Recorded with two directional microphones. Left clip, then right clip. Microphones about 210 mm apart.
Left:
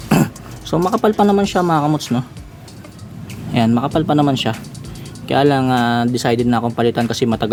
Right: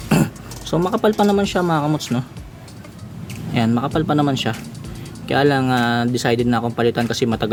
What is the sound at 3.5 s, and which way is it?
Speech, 15° left (ahead or behind).